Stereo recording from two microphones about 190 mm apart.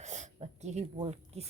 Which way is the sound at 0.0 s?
40° right (ahead or behind).